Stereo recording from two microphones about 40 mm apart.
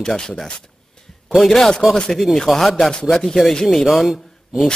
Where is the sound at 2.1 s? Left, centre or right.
Centre.